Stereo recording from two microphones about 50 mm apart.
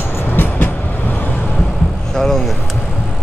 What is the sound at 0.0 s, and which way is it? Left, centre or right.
Vehicle, left.